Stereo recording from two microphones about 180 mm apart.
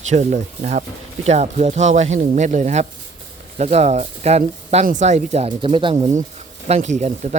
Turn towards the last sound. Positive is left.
turn(degrees=-40)  # may be behind; listen again after turning